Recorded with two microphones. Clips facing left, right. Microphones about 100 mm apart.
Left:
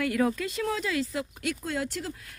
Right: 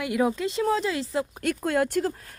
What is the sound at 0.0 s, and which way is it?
Speech, 20° right (ahead or behind).